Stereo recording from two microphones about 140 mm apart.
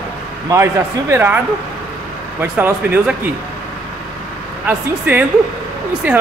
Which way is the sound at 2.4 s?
15° right (ahead or behind).